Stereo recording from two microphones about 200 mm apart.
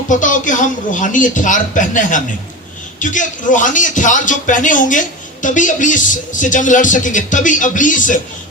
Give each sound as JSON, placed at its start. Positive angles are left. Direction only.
{"t": 0.1, "sound": "speech", "side_deg": 40}